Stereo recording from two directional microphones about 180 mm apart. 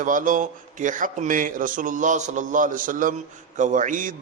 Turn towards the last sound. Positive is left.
turn(degrees=-45)  # may be behind; listen again after turning